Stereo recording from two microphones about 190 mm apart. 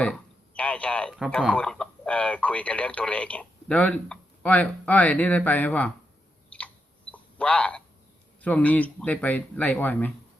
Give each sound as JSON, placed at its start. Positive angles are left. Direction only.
{"t": 0.0, "sound": "speech", "side_deg": 5}
{"t": 6.5, "sound": "chewing", "side_deg": 5}
{"t": 7.1, "sound": "a sound", "side_deg": 5}
{"t": 8.4, "sound": "speech", "side_deg": 5}